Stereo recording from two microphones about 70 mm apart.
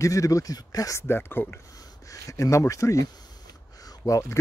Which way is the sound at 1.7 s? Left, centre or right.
Left.